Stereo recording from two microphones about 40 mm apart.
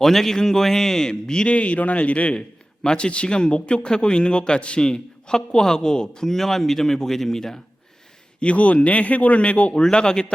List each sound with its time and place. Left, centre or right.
0.0 s a man's voice: centre
1.5 s a man's voice: left; by 7.6 s centre
8.4 s a man's voice: left
9.8 s a man's voice: centre